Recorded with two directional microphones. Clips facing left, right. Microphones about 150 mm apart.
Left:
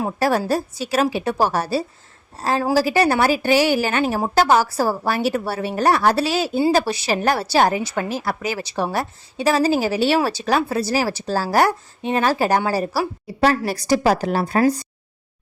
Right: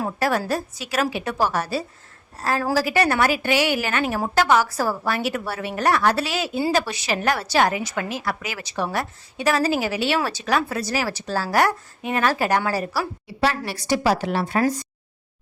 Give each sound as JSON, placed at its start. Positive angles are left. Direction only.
{"t": 0.0, "sound": "a woman's voice", "side_deg": 30}
{"t": 13.2, "sound": "a woman's voice", "side_deg": 40}